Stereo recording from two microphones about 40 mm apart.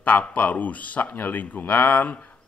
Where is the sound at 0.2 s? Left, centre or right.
Left.